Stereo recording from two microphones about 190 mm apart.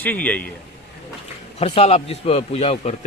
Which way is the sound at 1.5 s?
30° left (ahead or behind).